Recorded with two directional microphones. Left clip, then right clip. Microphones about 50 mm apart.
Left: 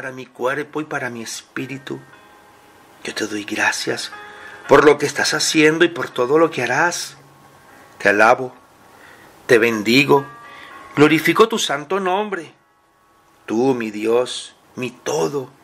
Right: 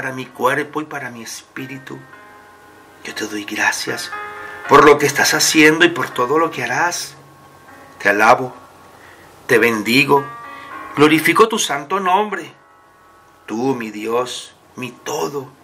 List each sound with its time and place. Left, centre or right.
0.0 s speech: left
3.0 s speech: left
9.5 s speech: left